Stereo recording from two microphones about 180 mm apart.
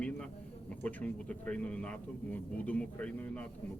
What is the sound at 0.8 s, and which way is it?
A man's voice, 10° left (ahead or behind).